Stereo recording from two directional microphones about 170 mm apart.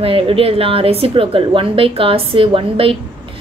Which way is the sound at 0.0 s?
35° right (ahead or behind).